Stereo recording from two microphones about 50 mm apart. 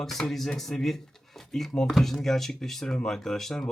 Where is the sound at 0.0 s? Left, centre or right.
Centre.